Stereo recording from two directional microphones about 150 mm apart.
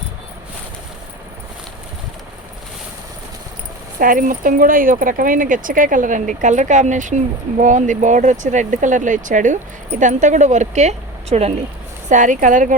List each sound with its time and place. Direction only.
3.9 s a woman's voice: 65° right (ahead or behind); by 11.5 s 45° right (ahead or behind)
12.0 s speech: 55° right (ahead or behind)